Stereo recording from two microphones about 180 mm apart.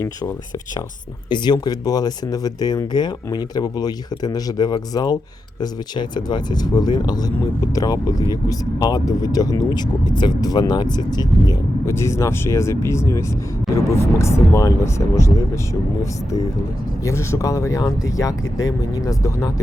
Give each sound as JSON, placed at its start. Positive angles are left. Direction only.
{"t": 1.3, "sound": "speech", "side_deg": 25}
{"t": 17.0, "sound": "speech", "side_deg": 15}